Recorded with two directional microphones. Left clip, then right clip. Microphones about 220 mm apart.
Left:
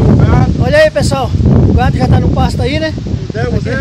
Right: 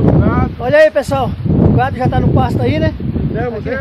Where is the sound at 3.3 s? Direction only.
25° left (ahead or behind).